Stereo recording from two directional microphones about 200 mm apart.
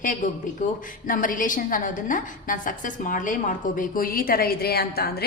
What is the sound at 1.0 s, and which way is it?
A woman's voice, 45° left (ahead or behind).